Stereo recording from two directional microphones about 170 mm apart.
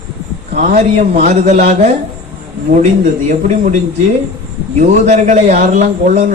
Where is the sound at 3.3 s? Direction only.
45° right (ahead or behind).